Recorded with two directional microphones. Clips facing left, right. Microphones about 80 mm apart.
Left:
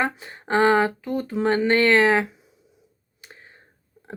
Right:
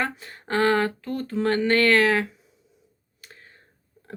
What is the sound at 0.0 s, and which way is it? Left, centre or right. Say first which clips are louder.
Speech: left 3 dB; centre.